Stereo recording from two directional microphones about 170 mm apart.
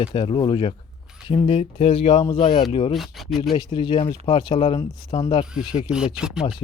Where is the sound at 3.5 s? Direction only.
30° left (ahead or behind).